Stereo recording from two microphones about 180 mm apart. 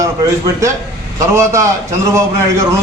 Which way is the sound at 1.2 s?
15° right (ahead or behind).